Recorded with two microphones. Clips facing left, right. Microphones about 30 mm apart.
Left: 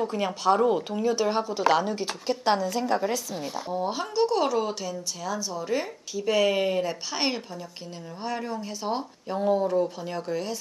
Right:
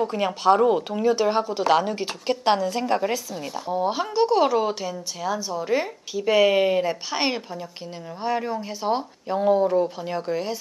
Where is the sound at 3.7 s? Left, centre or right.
Centre.